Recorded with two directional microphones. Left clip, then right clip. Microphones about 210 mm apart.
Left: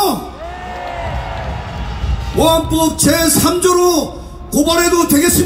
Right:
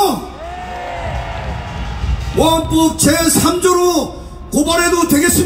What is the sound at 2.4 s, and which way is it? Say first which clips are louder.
Speech: even; 25° left (ahead or behind).